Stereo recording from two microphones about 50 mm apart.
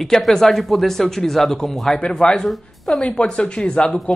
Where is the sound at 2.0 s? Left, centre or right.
Centre.